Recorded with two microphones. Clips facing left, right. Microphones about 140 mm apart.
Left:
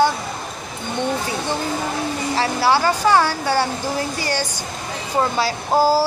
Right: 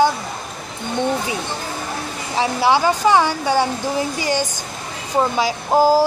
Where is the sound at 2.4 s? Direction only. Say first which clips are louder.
Right 2 dB; 20° right (ahead or behind).